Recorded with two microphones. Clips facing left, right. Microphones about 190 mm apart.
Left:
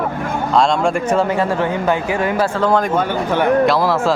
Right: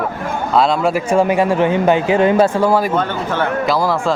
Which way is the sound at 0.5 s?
5° right (ahead or behind).